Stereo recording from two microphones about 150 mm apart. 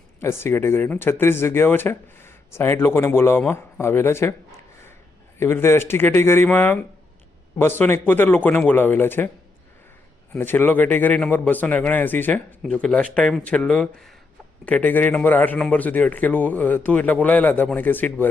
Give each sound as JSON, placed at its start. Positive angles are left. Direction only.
{"t": 0.2, "sound": "speech", "side_deg": 15}
{"t": 10.3, "sound": "speech", "side_deg": 15}